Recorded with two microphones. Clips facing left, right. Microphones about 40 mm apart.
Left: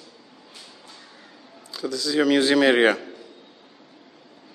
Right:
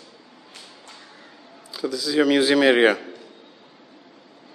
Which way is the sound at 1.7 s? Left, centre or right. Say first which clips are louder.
Right 1 dB; centre.